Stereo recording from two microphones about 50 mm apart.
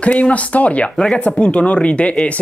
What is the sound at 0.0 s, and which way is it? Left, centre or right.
Speech, left.